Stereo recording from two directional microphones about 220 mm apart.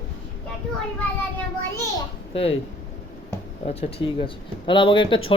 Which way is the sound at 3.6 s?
30° left (ahead or behind).